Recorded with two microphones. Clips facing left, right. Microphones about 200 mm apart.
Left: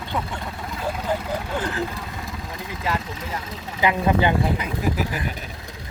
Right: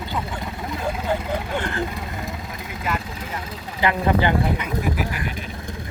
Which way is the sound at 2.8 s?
30° left (ahead or behind).